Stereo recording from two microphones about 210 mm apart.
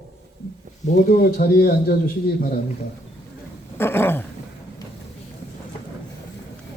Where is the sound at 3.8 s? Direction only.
10° left (ahead or behind).